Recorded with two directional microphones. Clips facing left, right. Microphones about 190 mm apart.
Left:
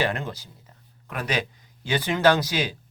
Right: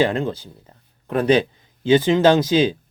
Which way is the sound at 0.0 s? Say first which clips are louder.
Right 7 dB; 25° right (ahead or behind).